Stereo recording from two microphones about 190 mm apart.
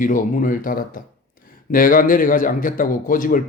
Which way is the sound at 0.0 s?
45° left (ahead or behind).